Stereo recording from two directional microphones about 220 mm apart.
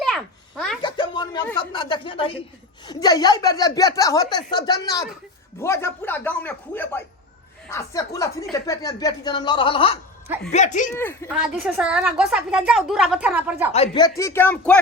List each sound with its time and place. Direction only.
0.0 s a sound: centre (ahead or behind)
0.8 s a sound: 20° left (ahead or behind)
1.5 s a woman's voice: 20° left (ahead or behind)
10.9 s a woman's voice: 10° left (ahead or behind)
11.3 s a woman's voice: 5° right (ahead or behind)
13.7 s a woman's voice: 25° left (ahead or behind)
14.2 s a woman's voice: 10° left (ahead or behind)